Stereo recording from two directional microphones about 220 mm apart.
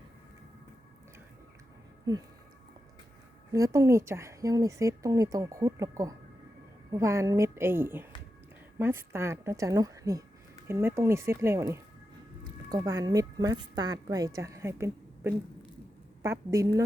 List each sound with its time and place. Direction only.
3.5 s speech: 15° right (ahead or behind)